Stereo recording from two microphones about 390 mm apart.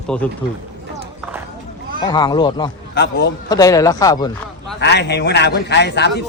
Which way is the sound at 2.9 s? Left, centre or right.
Left.